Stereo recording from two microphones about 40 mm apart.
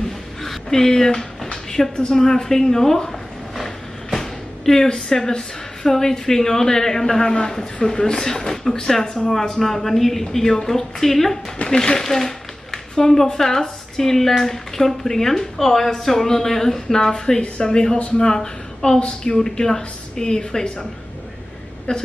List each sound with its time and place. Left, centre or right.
0.4 s a sound: centre
4.2 s speech: centre
11.7 s speech: centre
18.9 s a woman's voice: left
19.3 s speech: centre
21.9 s a woman's voice: left